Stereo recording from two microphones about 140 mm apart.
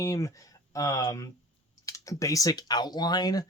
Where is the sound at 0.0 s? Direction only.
20° left (ahead or behind).